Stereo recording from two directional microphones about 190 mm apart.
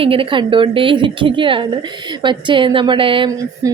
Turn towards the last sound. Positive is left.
turn(degrees=-25)  # may be behind; listen again after turning